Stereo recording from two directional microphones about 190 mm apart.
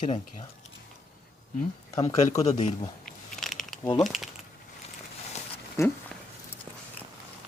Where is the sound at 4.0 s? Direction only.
Centre (ahead or behind).